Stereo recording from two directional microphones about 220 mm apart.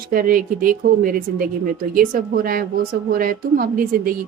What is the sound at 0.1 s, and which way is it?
A woman's voice, 40° right (ahead or behind).